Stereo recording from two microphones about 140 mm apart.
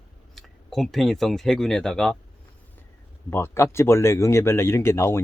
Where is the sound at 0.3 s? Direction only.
Centre (ahead or behind).